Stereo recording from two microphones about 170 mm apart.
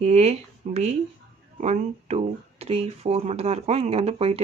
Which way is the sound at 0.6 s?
50° right (ahead or behind).